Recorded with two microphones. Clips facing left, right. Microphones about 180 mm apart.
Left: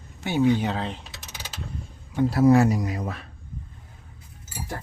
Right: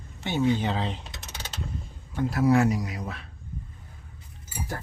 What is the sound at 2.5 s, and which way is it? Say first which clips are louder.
Speech: left 3 dB; 40° left (ahead or behind).